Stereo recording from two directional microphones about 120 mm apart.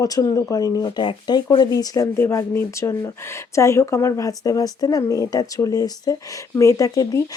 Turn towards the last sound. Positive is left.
turn(degrees=30)  # may be behind; listen again after turning